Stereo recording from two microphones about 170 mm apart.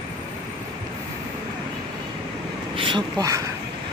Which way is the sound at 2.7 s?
30° right (ahead or behind).